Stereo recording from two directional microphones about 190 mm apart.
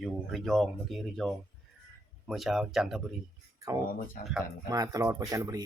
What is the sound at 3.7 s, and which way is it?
Speech, 20° right (ahead or behind).